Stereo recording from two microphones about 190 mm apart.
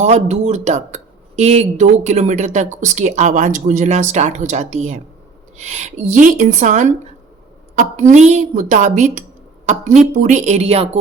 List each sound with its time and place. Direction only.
0.0 s speech: 35° right (ahead or behind)